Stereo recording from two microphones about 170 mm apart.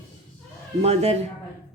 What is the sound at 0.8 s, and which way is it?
Speech, 35° right (ahead or behind).